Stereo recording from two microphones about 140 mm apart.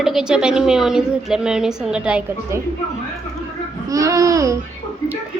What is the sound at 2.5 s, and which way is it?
Babbling, 20° right (ahead or behind).